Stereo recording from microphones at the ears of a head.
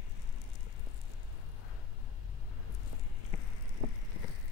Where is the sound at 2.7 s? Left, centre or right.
Left.